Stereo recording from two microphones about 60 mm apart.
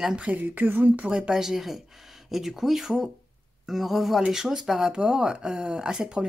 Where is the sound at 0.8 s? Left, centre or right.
Right.